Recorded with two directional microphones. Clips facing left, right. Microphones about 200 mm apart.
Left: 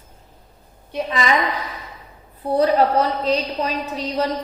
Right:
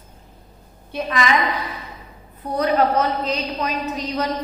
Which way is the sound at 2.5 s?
30° left (ahead or behind).